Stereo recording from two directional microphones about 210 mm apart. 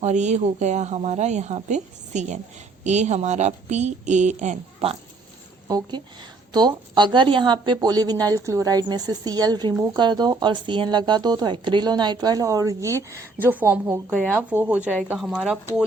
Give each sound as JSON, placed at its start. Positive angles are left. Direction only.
{"t": 0.0, "sound": "speech", "side_deg": -35}
{"t": 5.6, "sound": "a woman's voice", "side_deg": -20}
{"t": 14.1, "sound": "a woman's voice", "side_deg": 0}